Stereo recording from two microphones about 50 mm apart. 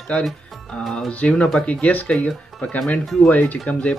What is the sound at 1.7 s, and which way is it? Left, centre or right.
Speech, left.